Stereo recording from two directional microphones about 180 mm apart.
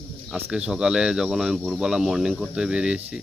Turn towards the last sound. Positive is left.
turn(degrees=-5)  # may be behind; listen again after turning